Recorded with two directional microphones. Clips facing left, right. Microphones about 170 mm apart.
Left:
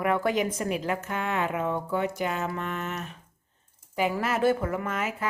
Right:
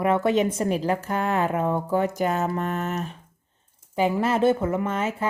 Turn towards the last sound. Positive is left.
turn(degrees=-30)  # may be behind; listen again after turning